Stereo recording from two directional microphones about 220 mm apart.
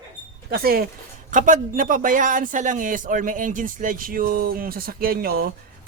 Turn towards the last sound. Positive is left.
turn(degrees=-45)  # may be behind; listen again after turning